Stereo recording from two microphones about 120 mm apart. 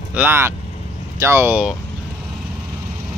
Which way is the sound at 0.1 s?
15° right (ahead or behind).